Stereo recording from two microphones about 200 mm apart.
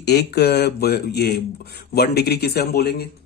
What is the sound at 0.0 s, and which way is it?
Speech, 55° left (ahead or behind).